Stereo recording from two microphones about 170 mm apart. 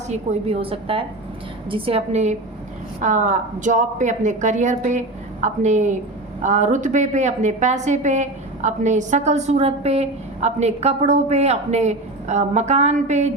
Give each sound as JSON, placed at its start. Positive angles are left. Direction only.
{"t": 0.1, "sound": "a woman's voice", "side_deg": -40}